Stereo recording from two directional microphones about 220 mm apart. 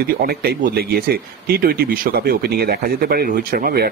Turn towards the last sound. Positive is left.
turn(degrees=-40)  # may be behind; listen again after turning